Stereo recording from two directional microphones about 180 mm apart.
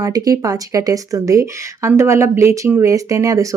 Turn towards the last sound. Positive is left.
turn(degrees=-20)  # may be behind; listen again after turning